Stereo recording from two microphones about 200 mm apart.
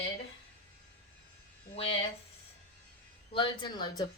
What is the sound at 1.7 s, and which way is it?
Speech, 30° left (ahead or behind).